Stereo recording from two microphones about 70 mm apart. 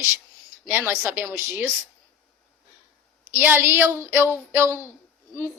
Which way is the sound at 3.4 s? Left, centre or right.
Right.